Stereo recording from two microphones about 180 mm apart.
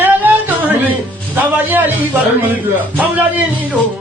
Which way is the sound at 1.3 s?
10° right (ahead or behind).